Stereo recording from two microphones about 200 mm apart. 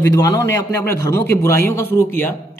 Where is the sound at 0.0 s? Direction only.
15° left (ahead or behind).